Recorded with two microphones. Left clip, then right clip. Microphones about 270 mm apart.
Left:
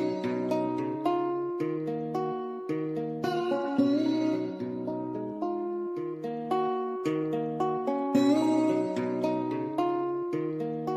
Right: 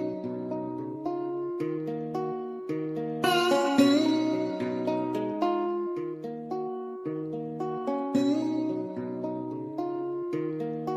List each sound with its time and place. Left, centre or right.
3.4 s music: right
8.1 s music: centre